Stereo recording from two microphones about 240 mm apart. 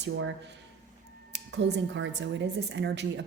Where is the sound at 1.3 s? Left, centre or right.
Right.